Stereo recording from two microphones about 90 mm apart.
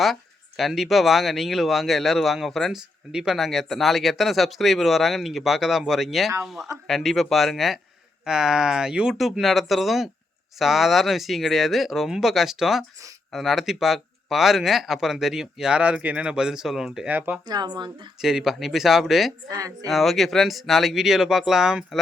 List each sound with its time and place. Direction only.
0.0 s speech: centre (ahead or behind)
17.1 s speech: 20° right (ahead or behind)
17.5 s speech: 50° right (ahead or behind)
18.2 s speech: 5° right (ahead or behind)
19.5 s speech: 40° right (ahead or behind)
19.9 s speech: centre (ahead or behind)